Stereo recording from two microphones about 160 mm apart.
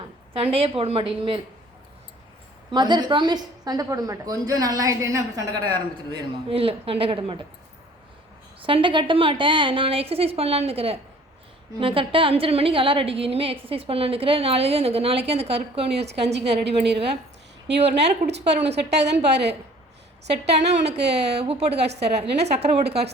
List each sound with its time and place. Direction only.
0.3 s a woman's voice: 40° right (ahead or behind)
2.6 s a woman's voice: 25° right (ahead or behind)
8.6 s a woman's voice: 30° right (ahead or behind)
16.6 s a woman's voice: 90° right
21.2 s a woman's voice: 40° right (ahead or behind)